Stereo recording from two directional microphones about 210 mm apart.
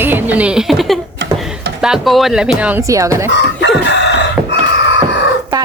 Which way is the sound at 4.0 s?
55° left (ahead or behind).